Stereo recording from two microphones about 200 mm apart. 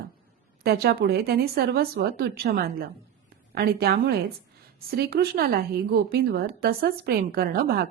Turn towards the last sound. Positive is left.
turn(degrees=-50)  # may be behind; listen again after turning